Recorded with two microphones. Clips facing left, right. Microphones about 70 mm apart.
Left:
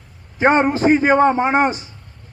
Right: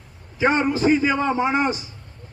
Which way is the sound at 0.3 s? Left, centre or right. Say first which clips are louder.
Left 5 dB; left.